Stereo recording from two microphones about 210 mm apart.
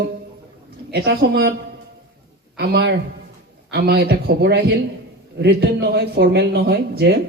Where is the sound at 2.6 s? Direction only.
50° right (ahead or behind).